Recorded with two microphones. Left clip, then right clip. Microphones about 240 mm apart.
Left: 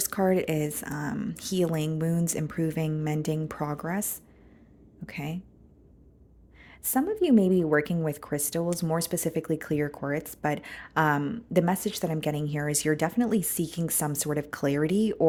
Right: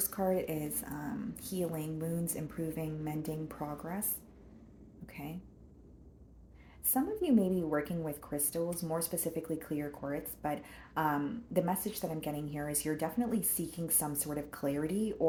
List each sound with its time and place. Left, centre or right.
0.0 s speech: left
5.0 s speech: left
6.9 s speech: left